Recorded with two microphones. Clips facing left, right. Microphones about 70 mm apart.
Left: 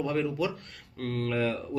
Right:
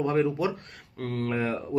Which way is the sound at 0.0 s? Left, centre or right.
Right.